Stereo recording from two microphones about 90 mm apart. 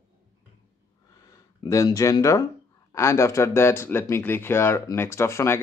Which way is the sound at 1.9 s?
40° left (ahead or behind).